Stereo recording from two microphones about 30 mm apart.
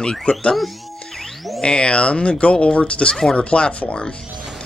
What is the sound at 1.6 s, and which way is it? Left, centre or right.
Speech, left.